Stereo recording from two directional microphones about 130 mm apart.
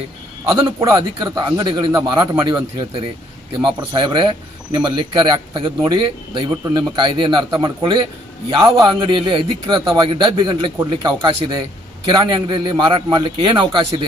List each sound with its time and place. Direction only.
0.9 s speech: 35° right (ahead or behind)